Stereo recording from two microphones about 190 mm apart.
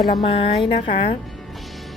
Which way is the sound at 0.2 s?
30° left (ahead or behind).